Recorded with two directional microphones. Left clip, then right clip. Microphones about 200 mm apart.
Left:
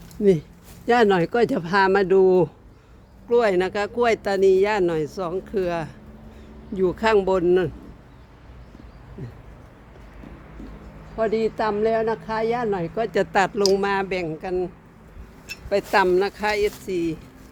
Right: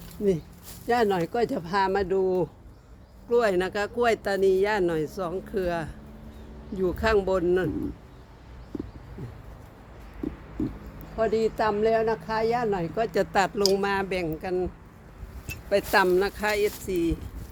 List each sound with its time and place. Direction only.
0.9 s speech: 55° left (ahead or behind)
3.2 s speech: 30° left (ahead or behind)
6.7 s speech: 35° left (ahead or behind)
11.2 s speech: 25° left (ahead or behind)
15.7 s speech: 15° left (ahead or behind)